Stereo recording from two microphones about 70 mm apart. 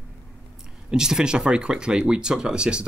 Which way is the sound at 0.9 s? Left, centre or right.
Centre.